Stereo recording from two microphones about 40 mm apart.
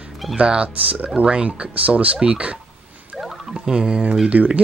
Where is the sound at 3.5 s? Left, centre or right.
Centre.